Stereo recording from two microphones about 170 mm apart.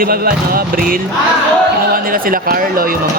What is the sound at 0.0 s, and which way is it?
Speech, 60° right (ahead or behind).